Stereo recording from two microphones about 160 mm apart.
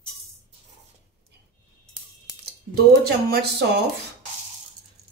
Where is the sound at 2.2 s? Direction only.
80° right.